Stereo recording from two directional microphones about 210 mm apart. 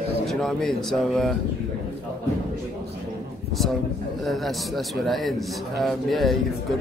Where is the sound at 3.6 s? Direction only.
Centre (ahead or behind).